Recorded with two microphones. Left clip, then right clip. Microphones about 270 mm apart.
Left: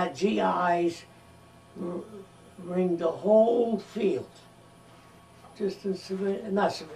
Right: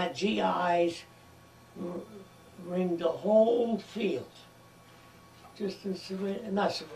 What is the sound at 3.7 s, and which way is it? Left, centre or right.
Speech, centre.